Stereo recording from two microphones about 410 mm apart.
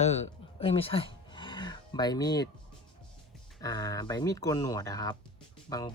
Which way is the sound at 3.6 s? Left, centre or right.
Centre.